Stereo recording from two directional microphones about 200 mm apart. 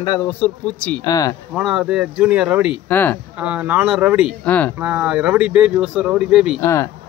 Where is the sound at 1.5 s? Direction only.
Centre (ahead or behind).